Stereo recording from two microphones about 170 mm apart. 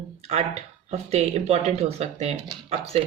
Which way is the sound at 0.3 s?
40° right (ahead or behind).